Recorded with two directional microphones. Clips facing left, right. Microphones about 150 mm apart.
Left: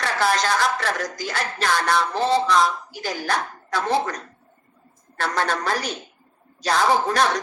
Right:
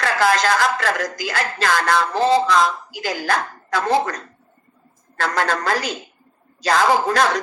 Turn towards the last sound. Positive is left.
turn(degrees=-90)